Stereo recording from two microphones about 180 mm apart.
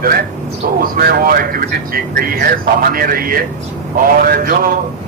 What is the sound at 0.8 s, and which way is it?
Speech, 55° right (ahead or behind).